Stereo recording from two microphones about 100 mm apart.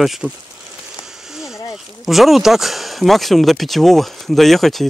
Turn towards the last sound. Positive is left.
turn(degrees=0)  # may be behind; listen again after turning